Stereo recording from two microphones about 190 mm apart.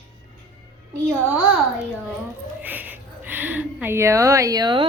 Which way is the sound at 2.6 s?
10° right (ahead or behind).